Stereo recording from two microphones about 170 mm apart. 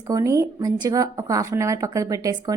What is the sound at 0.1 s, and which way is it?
A woman's voice, 20° right (ahead or behind).